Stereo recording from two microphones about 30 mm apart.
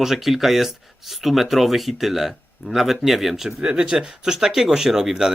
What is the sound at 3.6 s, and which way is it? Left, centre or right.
Speech, right.